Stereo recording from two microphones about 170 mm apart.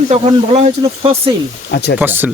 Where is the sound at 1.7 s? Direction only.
80° left.